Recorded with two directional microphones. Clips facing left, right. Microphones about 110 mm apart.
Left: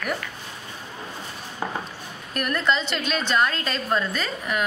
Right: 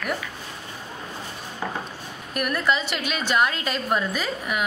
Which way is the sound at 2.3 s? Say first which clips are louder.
Even; 10° right (ahead or behind).